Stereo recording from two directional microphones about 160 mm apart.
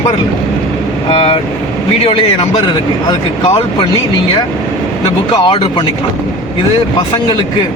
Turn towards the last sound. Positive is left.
turn(degrees=30)  # may be behind; listen again after turning